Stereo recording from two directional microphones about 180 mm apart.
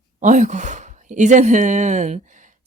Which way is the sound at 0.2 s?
40° right (ahead or behind).